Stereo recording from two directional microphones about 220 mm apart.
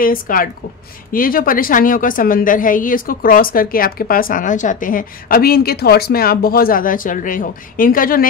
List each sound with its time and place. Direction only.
0.0 s a woman's voice: 40° left (ahead or behind)